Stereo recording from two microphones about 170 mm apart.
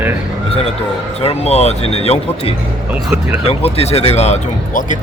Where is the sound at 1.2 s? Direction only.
35° left (ahead or behind).